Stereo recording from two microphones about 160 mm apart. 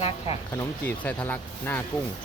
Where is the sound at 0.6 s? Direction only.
10° left (ahead or behind).